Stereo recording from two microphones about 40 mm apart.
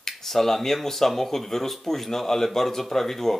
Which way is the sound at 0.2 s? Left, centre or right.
Centre.